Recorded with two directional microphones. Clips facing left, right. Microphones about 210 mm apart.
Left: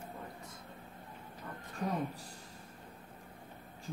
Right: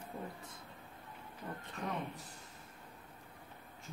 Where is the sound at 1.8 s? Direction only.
35° left (ahead or behind).